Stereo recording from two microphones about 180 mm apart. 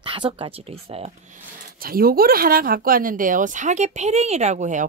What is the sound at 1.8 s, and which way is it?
Speech, 55° right (ahead or behind).